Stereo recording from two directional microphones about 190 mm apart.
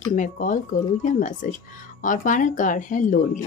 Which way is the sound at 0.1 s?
40° left (ahead or behind).